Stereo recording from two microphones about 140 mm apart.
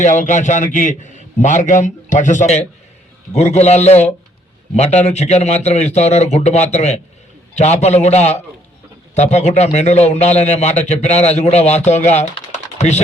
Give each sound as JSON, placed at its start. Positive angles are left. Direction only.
{"t": 0.0, "sound": "a man's voice", "side_deg": 60}